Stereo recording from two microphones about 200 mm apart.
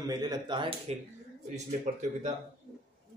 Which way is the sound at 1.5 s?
35° right (ahead or behind).